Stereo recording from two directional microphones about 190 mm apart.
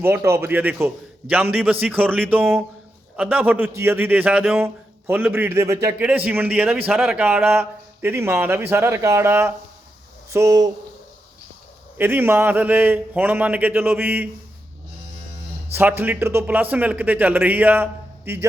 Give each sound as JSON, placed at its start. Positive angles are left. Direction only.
{"t": 0.0, "sound": "a man's voice", "side_deg": -15}
{"t": 11.9, "sound": "a man's voice", "side_deg": -10}
{"t": 15.7, "sound": "a man's voice", "side_deg": -10}